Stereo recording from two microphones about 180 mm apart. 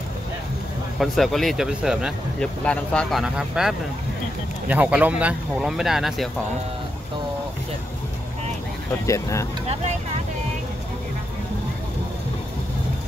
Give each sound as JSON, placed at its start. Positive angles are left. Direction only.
{"t": 0.9, "sound": "speech", "side_deg": 0}
{"t": 9.0, "sound": "speech", "side_deg": 15}